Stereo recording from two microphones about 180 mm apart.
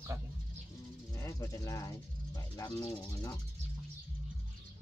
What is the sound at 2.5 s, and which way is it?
Speech, 25° left (ahead or behind).